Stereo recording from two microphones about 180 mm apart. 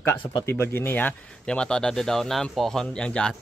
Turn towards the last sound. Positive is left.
turn(degrees=5)  # may be behind; listen again after turning